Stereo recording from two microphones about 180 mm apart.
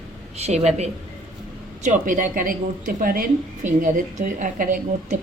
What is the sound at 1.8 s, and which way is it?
A woman's voice, 50° right (ahead or behind).